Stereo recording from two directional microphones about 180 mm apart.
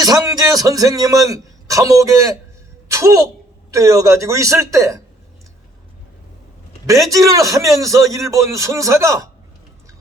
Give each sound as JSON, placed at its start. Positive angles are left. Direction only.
{"t": 0.0, "sound": "a man's voice", "side_deg": -20}
{"t": 6.8, "sound": "a man's voice", "side_deg": -20}